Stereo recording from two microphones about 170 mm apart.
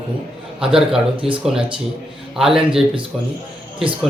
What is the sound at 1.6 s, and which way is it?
Speech, 30° right (ahead or behind).